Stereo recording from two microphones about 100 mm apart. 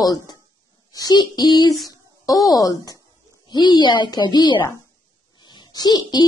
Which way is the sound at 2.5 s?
40° left (ahead or behind).